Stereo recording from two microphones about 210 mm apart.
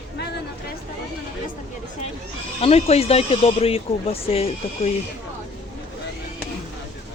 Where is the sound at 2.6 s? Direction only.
30° left (ahead or behind).